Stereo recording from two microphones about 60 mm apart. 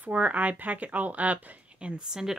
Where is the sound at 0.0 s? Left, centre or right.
Right.